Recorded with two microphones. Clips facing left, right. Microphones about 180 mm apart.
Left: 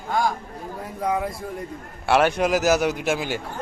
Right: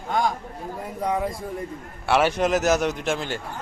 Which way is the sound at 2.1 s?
Centre (ahead or behind).